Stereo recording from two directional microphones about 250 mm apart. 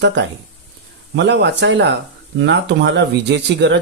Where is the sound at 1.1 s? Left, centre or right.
Right.